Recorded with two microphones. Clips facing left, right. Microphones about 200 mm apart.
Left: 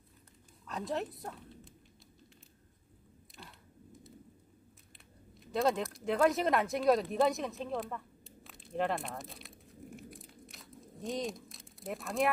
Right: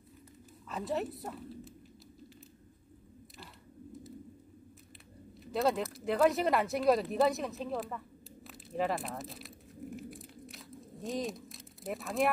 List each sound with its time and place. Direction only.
0.7 s speech: centre (ahead or behind)
5.4 s speech: centre (ahead or behind)
8.5 s a sound: centre (ahead or behind)